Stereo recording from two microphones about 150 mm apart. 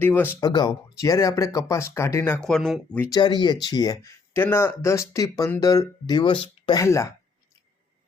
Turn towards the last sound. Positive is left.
turn(degrees=20)  # may be behind; listen again after turning